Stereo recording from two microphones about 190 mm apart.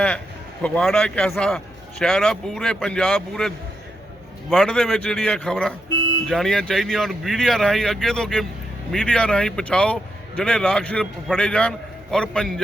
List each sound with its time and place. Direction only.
0.6 s a man's voice: 5° left (ahead or behind)